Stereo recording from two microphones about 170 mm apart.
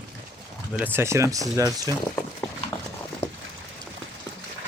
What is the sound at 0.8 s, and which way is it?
Speech, 10° right (ahead or behind).